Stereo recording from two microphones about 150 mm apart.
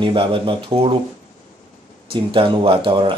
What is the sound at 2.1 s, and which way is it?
Speech, 35° right (ahead or behind).